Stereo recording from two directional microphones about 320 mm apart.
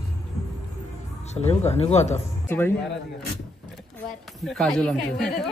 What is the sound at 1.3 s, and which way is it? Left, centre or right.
Speech, centre.